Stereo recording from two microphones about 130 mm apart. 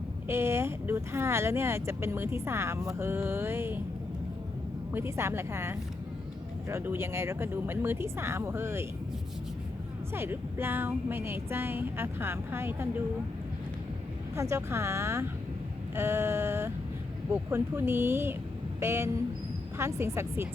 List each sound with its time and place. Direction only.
0.3 s speech: 20° right (ahead or behind)
4.9 s speech: 20° right (ahead or behind)
10.2 s a woman's voice: 15° right (ahead or behind)
14.5 s speech: 20° right (ahead or behind)